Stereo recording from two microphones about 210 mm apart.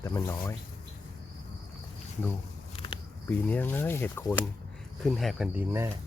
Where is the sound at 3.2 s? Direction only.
10° left (ahead or behind); by 5.9 s 10° right (ahead or behind).